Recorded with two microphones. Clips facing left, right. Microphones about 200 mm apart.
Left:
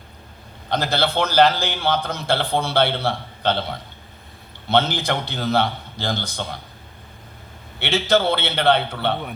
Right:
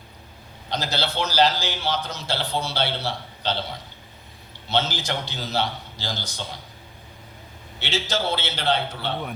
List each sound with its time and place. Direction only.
0.7 s a man's voice: 55° left (ahead or behind)
7.8 s a man's voice: 60° left (ahead or behind)